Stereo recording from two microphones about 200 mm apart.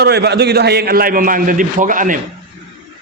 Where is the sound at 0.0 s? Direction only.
55° right (ahead or behind).